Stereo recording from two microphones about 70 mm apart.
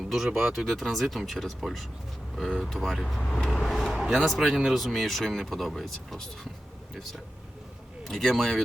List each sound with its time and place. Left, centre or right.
0.3 s speech: right
0.5 s speech: centre